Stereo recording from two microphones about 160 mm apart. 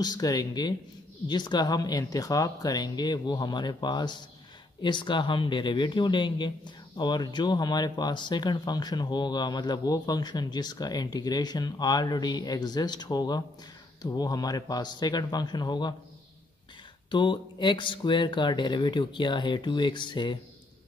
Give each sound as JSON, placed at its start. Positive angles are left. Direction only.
{"t": 0.0, "sound": "speech", "side_deg": 25}
{"t": 17.1, "sound": "speech", "side_deg": 30}